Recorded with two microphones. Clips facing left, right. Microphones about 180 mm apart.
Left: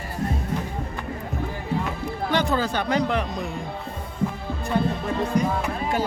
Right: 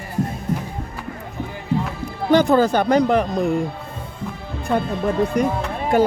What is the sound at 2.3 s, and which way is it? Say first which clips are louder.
Speech: right 9 dB; 45° right (ahead or behind).